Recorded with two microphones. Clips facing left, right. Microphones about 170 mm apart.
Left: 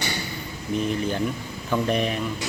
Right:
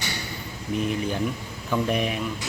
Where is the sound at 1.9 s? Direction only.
5° right (ahead or behind).